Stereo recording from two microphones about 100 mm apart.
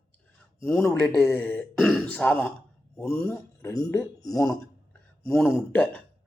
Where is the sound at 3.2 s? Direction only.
25° left (ahead or behind).